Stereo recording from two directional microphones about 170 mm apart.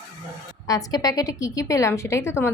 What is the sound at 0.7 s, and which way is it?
A woman's voice, 20° left (ahead or behind).